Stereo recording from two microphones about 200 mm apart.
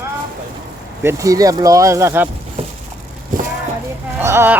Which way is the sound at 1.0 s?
15° right (ahead or behind).